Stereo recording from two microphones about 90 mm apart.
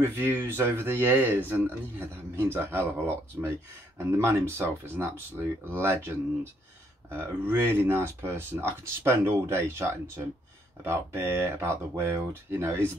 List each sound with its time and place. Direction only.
0.2 s speech: 25° right (ahead or behind)